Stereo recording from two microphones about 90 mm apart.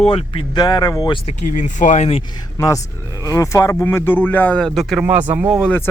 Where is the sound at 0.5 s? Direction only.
50° left (ahead or behind).